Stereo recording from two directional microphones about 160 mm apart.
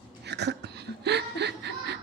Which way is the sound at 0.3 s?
90° right.